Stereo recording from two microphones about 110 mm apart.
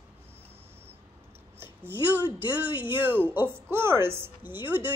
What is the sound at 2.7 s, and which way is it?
Speech, 45° left (ahead or behind).